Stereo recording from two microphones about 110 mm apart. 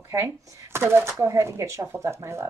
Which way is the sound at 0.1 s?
25° right (ahead or behind).